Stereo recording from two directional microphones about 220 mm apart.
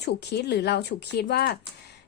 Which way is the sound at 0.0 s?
50° left (ahead or behind).